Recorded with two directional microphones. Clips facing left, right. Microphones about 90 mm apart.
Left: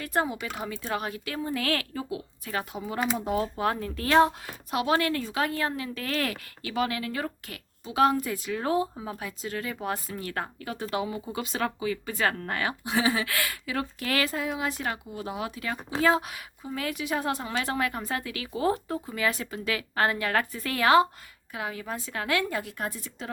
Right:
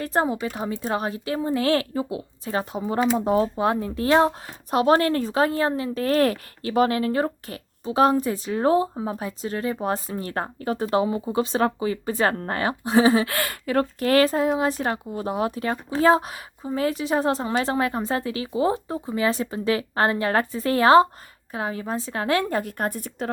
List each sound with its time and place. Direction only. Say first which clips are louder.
0.0 s speech: right 5 dB; 30° right (ahead or behind)
3.5 s speech: right 5 dB; 20° right (ahead or behind); by 23.3 s 50° right (ahead or behind)